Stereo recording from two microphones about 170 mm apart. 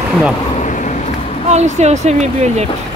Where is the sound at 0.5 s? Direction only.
45° left (ahead or behind).